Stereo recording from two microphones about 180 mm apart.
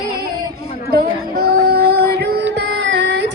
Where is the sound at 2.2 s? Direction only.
65° right (ahead or behind).